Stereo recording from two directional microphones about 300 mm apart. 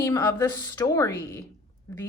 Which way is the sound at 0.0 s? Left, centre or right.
Centre.